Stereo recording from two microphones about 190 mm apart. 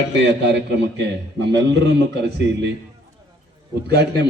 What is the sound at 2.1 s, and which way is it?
Speech, 65° right (ahead or behind).